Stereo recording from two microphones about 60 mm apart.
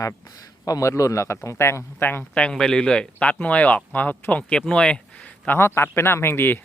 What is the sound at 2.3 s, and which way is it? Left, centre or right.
Speech, centre.